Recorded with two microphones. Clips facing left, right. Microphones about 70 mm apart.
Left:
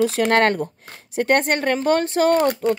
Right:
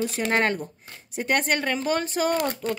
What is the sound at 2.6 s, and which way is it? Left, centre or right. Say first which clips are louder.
Speech: left 8 dB; left.